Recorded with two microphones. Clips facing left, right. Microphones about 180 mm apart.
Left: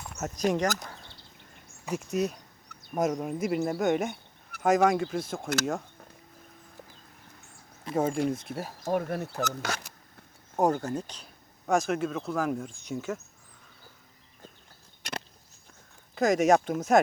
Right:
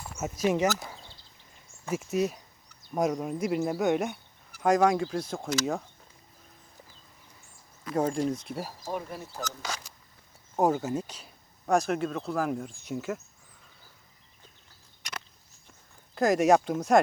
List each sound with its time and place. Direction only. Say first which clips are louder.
0.0 s a sound: right 1 dB; centre (ahead or behind)
0.5 s speech: right 2 dB; 5° right (ahead or behind)
1.0 s a sound: left 1 dB; 65° left (ahead or behind)
1.9 s speech: right 1 dB; centre (ahead or behind)
7.9 s speech: even; 5° left (ahead or behind)
8.2 s speech: left 1 dB; 55° left (ahead or behind)
10.6 s speech: even; 5° right (ahead or behind)
16.1 s speech: even; centre (ahead or behind)